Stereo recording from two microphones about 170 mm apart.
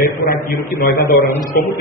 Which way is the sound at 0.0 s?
55° left (ahead or behind).